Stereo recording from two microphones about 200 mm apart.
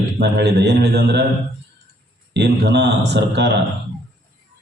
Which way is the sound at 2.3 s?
60° right (ahead or behind).